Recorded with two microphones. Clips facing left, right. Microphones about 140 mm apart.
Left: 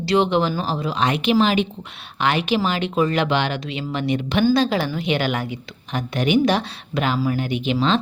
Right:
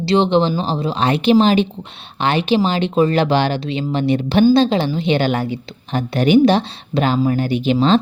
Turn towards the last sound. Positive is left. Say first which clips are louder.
# right 5 dB
turn(degrees=-35)  # may be behind; listen again after turning